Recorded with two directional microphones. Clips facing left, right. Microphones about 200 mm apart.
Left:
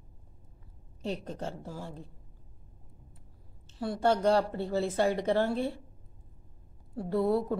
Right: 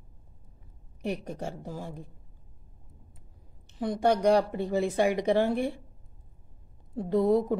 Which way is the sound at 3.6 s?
15° right (ahead or behind).